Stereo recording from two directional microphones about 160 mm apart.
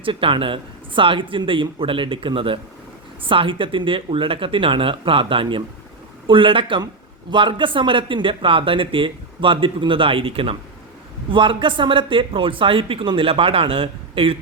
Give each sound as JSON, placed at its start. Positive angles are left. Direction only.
{"t": 0.0, "sound": "a man's voice", "side_deg": -35}